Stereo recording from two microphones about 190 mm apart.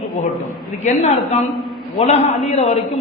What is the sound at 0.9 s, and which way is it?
A woman's voice, 35° left (ahead or behind).